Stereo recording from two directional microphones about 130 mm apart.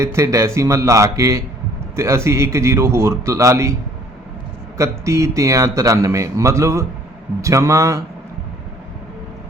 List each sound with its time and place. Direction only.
0.0 s speech: 20° right (ahead or behind)
4.8 s speech: 20° right (ahead or behind)